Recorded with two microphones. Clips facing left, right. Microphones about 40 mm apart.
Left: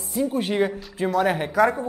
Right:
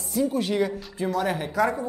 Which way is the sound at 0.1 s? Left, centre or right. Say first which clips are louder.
Left 1 dB; left.